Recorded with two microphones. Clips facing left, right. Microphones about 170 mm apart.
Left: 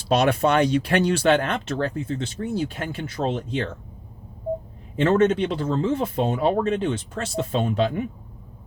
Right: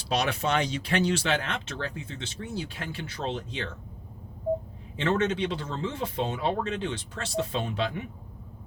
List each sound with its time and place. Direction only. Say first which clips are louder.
0.1 s speech: left 8 dB; 55° left (ahead or behind)
4.9 s speech: left 8 dB; 50° left (ahead or behind)